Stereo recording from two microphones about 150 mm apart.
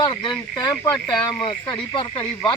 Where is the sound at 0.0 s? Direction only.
30° left (ahead or behind).